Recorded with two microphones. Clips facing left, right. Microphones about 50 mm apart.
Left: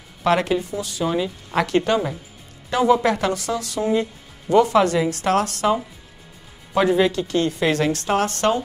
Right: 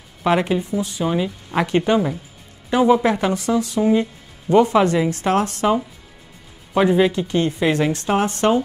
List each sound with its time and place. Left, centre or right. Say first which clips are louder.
0.2 s speech: right 1 dB; centre